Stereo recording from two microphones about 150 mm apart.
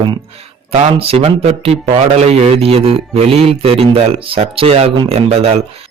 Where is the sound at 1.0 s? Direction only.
40° right (ahead or behind).